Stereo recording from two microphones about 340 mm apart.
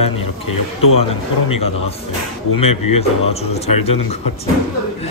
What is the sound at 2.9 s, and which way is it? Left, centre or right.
Speech, centre.